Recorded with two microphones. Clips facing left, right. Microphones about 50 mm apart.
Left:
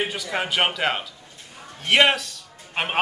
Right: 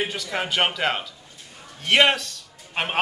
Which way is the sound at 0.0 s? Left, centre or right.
Centre.